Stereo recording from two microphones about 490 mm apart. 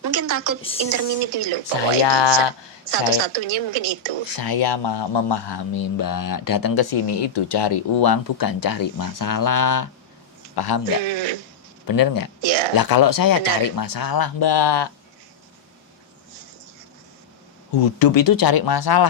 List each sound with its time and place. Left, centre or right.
0.1 s a woman's voice: right
0.9 s a woman's voice: right
1.2 s a woman's voice: right
2.0 s speech: left
2.9 s a woman's voice: right
4.4 s speech: left
10.5 s a man's voice: left
11.0 s speech: right
11.9 s speech: left
12.4 s a woman's voice: right
12.7 s speech: left
17.7 s speech: left